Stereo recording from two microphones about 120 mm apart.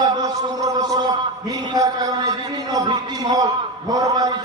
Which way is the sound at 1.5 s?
30° right (ahead or behind).